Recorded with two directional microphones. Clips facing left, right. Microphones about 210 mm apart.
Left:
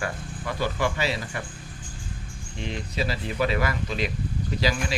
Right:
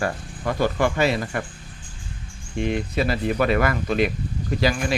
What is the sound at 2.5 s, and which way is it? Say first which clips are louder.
Speech: right 7 dB; 55° right (ahead or behind).